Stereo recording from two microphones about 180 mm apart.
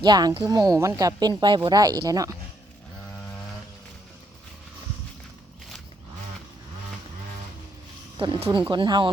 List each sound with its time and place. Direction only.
0.0 s speech: 20° right (ahead or behind)
8.2 s speech: 25° right (ahead or behind)